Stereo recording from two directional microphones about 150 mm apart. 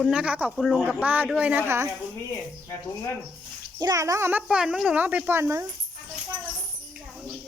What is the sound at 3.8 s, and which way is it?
Speech, 20° right (ahead or behind).